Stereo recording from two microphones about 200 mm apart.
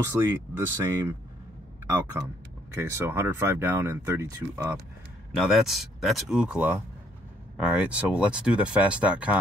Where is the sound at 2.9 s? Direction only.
15° right (ahead or behind).